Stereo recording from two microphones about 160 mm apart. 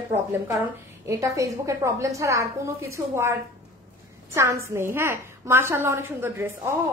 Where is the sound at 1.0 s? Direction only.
20° right (ahead or behind).